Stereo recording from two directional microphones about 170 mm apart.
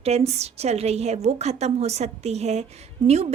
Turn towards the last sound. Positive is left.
turn(degrees=-40)  # may be behind; listen again after turning